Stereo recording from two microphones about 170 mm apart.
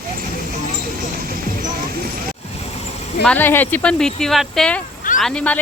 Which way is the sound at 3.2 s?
10° left (ahead or behind).